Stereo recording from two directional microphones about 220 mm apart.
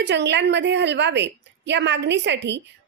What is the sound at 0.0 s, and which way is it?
A woman's voice, 50° right (ahead or behind).